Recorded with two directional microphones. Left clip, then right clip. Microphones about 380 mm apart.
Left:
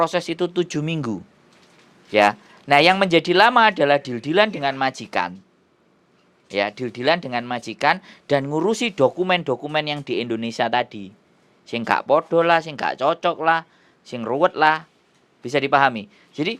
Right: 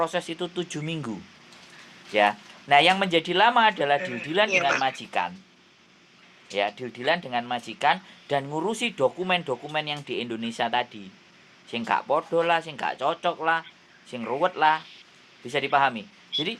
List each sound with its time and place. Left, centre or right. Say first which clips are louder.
0.0 s speech: left 6 dB; left
2.1 s speech: left 5 dB; left
6.5 s speech: left 4 dB; left